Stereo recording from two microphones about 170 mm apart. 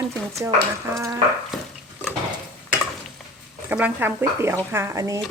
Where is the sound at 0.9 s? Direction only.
20° right (ahead or behind).